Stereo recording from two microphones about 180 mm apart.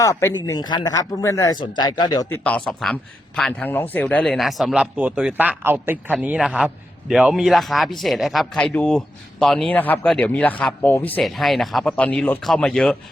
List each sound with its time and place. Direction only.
0.0 s speech: 15° left (ahead or behind)
2.4 s speech: 5° left (ahead or behind)